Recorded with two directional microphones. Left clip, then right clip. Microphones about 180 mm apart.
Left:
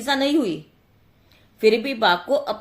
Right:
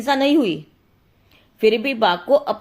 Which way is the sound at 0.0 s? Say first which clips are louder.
Right 3 dB; 40° right (ahead or behind).